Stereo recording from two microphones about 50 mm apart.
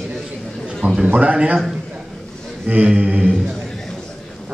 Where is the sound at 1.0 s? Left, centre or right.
Right.